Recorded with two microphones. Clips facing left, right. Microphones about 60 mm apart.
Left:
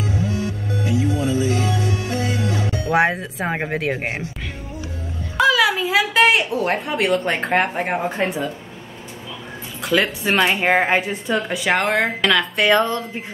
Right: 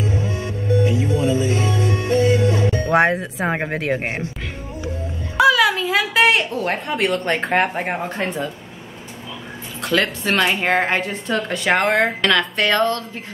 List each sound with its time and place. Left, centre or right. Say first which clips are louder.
0.0 s music: even; right
2.9 s speech: even; centre
5.4 s speech: right 2 dB; centre
9.8 s speech: even; centre
12.7 s speech: even; centre